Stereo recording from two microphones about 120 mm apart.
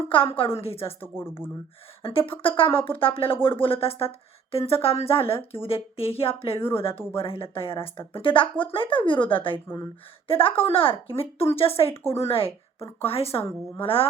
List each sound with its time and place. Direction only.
0.1 s a woman's voice: 50° left (ahead or behind)
1.1 s speech: 20° left (ahead or behind)
2.0 s a woman's voice: 50° left (ahead or behind)
6.6 s speech: 20° left (ahead or behind)
7.2 s a woman's voice: 50° left (ahead or behind)